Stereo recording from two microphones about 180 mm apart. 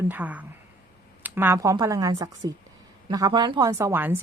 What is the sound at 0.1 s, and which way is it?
A woman's voice, 10° right (ahead or behind).